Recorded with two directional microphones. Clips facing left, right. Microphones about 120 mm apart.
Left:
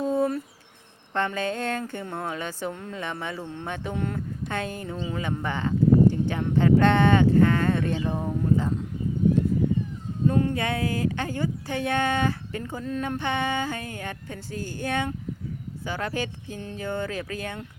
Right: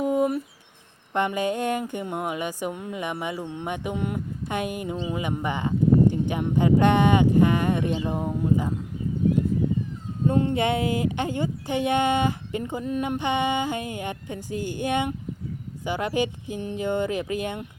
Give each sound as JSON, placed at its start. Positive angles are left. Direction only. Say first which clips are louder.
{"t": 0.0, "sound": "a sound", "louder": "right 2 dB", "side_deg": -15}
{"t": 1.1, "sound": "speech", "louder": "right 3 dB", "side_deg": -15}
{"t": 10.2, "sound": "speech", "louder": "right 2 dB", "side_deg": -20}